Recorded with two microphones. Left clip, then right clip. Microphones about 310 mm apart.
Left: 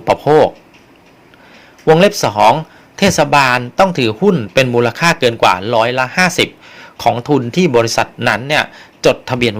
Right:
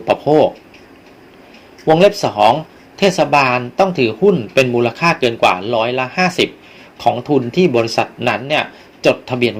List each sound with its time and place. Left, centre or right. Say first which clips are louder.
0.0 s speech: left 2 dB; left
2.0 s speech: left 1 dB; left